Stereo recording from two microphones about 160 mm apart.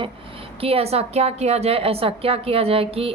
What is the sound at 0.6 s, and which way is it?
A woman's voice, 40° right (ahead or behind).